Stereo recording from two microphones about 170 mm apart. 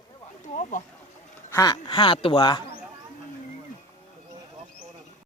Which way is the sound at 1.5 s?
20° left (ahead or behind).